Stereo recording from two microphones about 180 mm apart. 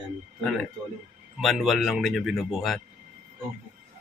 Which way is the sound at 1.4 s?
Centre (ahead or behind).